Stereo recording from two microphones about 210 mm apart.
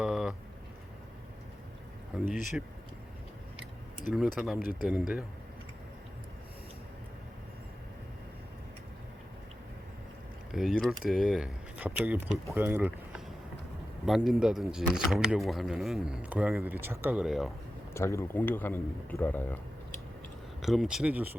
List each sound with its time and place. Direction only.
0.0 s a sound: 5° right (ahead or behind)
2.2 s speech: 40° left (ahead or behind)
4.4 s speech: centre (ahead or behind)
4.6 s speech: 40° left (ahead or behind)
4.9 s speech: centre (ahead or behind)
10.5 s speech: centre (ahead or behind)
17.9 s a man's voice: 15° left (ahead or behind)
20.6 s speech: centre (ahead or behind)